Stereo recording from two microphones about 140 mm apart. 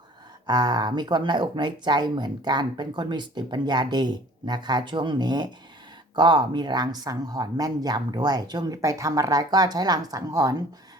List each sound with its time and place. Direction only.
0.4 s speech: 30° right (ahead or behind)